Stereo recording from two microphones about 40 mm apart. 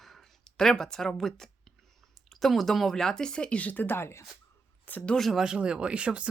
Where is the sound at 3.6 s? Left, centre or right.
Left.